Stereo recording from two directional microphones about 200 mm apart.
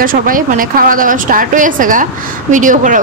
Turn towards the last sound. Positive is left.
turn(degrees=-40)  # may be behind; listen again after turning